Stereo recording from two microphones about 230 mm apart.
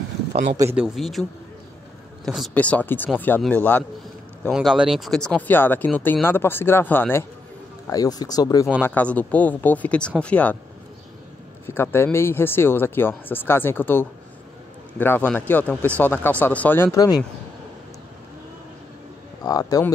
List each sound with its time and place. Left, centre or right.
0.6 s speech: centre
2.2 s speech: centre
11.6 s speech: centre
19.4 s speech: centre